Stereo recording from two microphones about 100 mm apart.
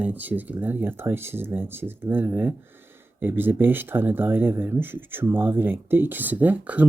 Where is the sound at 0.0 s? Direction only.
15° right (ahead or behind).